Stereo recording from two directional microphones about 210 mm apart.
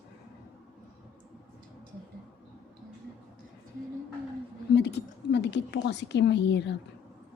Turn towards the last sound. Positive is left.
turn(degrees=55)  # may be behind; listen again after turning